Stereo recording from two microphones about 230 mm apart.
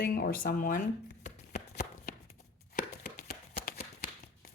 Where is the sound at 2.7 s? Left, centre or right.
Left.